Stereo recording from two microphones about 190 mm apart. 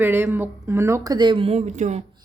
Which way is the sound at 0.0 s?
10° right (ahead or behind).